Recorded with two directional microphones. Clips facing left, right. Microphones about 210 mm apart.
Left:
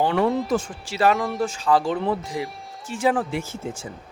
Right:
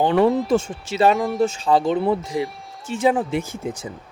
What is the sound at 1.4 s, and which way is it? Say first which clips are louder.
Speech: right 3 dB; 25° right (ahead or behind).